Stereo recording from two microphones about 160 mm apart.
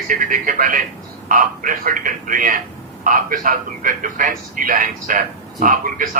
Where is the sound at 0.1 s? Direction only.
60° right (ahead or behind).